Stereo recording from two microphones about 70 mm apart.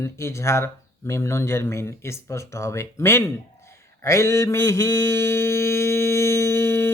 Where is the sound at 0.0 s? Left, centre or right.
Left.